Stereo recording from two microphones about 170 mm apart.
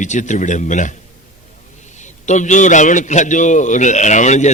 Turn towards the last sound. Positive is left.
turn(degrees=45)  # may be behind; listen again after turning